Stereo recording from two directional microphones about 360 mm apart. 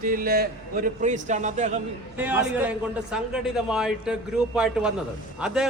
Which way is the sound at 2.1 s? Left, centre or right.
Centre.